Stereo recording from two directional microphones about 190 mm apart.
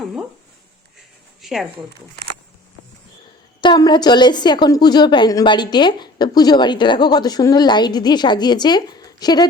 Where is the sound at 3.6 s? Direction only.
25° left (ahead or behind).